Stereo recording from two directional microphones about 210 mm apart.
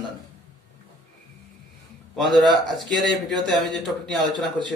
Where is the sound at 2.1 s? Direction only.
Centre (ahead or behind).